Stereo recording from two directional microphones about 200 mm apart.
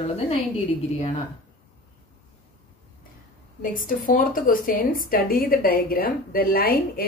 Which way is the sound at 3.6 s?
45° left (ahead or behind).